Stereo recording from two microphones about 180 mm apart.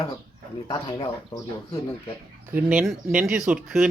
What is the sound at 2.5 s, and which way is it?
Speech, 10° right (ahead or behind).